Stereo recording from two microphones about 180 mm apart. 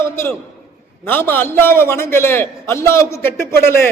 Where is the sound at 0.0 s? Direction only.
15° left (ahead or behind).